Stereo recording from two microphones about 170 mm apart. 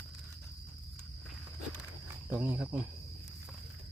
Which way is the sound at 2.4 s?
10° right (ahead or behind).